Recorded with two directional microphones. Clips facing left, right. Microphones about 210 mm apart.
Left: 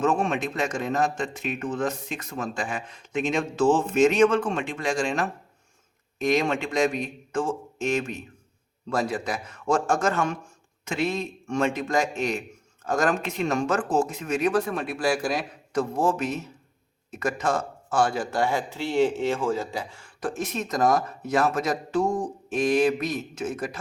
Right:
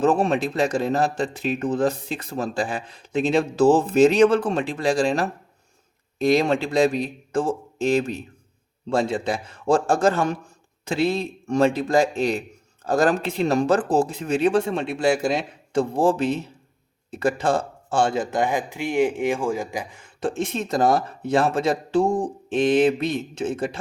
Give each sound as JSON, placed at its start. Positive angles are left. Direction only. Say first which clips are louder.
{"t": 0.0, "sound": "a man's voice", "louder": "right 4 dB", "side_deg": -35}